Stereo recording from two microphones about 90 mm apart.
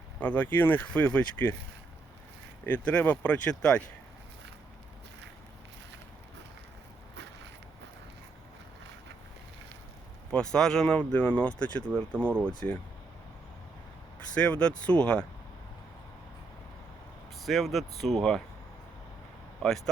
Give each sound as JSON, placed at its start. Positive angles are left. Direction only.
{"t": 0.2, "sound": "speech", "side_deg": 20}
{"t": 2.6, "sound": "speech", "side_deg": 15}
{"t": 10.3, "sound": "speech", "side_deg": 5}
{"t": 14.3, "sound": "speech", "side_deg": 10}
{"t": 17.4, "sound": "speech", "side_deg": 0}
{"t": 19.6, "sound": "speech", "side_deg": 5}